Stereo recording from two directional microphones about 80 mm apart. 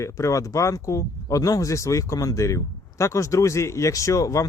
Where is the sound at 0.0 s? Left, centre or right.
Left.